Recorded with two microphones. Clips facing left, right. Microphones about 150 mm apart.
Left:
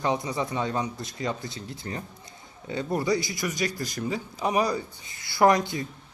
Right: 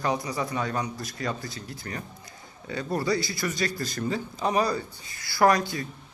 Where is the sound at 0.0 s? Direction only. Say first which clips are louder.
Left 1 dB; 25° left (ahead or behind).